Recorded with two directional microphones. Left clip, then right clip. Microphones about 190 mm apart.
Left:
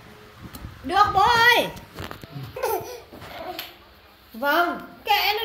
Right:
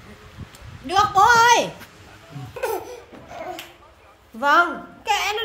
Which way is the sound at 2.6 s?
15° right (ahead or behind).